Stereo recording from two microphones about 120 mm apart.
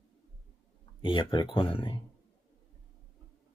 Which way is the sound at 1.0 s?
45° left (ahead or behind).